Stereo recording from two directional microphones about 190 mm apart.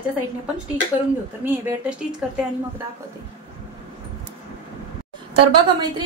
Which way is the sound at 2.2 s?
5° right (ahead or behind).